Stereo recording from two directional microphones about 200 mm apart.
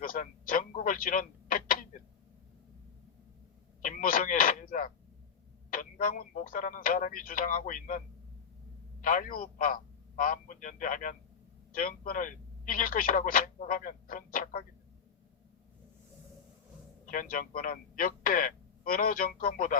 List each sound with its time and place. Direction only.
0.0 s speech: 45° left (ahead or behind)
3.8 s a man's voice: 40° left (ahead or behind)
17.1 s speech: 40° left (ahead or behind)